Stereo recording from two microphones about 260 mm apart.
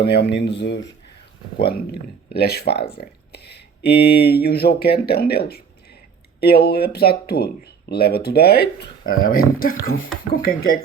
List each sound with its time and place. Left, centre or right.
0.0 s speech: left